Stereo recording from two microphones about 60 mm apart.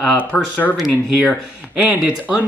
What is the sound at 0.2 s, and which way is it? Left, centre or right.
Speech, left.